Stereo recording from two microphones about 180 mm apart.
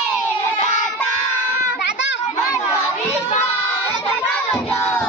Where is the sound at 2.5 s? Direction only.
15° left (ahead or behind).